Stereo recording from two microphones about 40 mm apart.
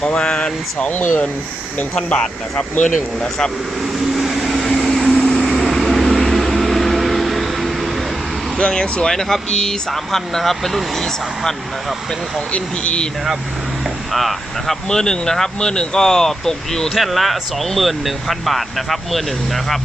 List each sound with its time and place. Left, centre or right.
0.0 s speech: left
0.9 s speech: left
2.0 s speech: left
4.1 s vehicle: centre
8.5 s speech: left; by 11.5 s centre
12.5 s speech: left
14.1 s speech: centre
14.8 s speech: centre
16.9 s speech: centre